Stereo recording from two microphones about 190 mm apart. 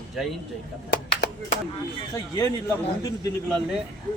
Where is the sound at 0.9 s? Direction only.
65° left (ahead or behind).